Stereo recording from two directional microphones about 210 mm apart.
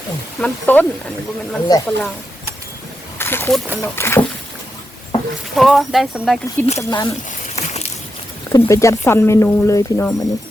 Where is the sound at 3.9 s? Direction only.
10° left (ahead or behind).